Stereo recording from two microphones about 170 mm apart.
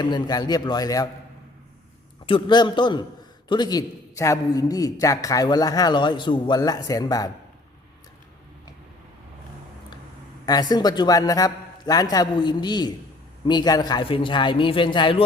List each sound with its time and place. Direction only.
0.0 s a man's voice: 25° left (ahead or behind)
2.2 s a man's voice: 30° left (ahead or behind)
10.4 s a man's voice: 25° left (ahead or behind)